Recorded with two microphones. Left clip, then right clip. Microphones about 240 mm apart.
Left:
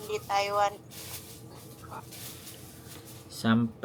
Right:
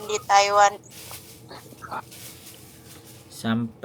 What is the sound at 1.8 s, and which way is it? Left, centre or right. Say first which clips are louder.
Dog: right 11 dB; left.